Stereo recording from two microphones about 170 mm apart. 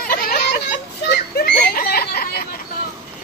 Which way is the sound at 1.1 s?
70° left (ahead or behind).